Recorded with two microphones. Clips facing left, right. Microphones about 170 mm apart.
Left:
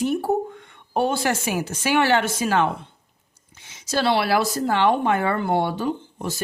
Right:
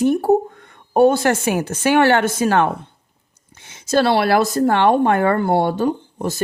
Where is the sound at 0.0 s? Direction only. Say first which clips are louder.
Right 6 dB; 50° right (ahead or behind).